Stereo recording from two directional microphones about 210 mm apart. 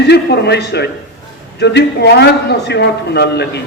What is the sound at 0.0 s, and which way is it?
A man's voice, 50° left (ahead or behind).